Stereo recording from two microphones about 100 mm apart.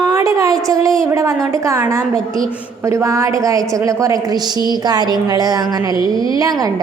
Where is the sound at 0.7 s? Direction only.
35° right (ahead or behind).